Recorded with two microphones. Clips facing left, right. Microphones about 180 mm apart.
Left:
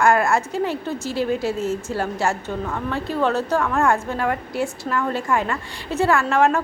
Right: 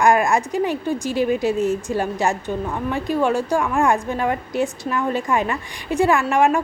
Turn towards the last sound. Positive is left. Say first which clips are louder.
# right 1 dB
turn(degrees=-15)  # may be behind; listen again after turning